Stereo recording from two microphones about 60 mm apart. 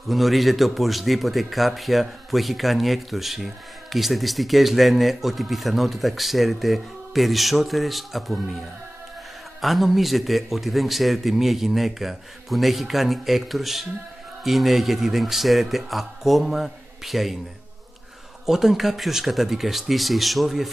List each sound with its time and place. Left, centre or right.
0.1 s a man's voice: centre
9.6 s a man's voice: centre
18.4 s a man's voice: centre